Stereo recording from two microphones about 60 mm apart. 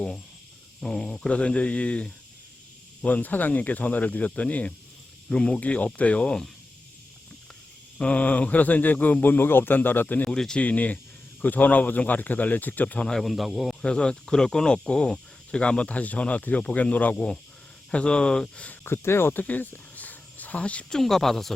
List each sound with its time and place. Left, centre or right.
0.8 s speech: centre
7.9 s speech: left
10.2 s speech: centre
10.6 s speech: left
13.1 s speech: centre
13.8 s speech: centre
18.9 s speech: left
20.9 s speech: centre